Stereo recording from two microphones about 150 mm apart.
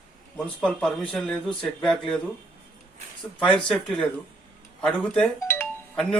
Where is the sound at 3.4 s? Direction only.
5° left (ahead or behind).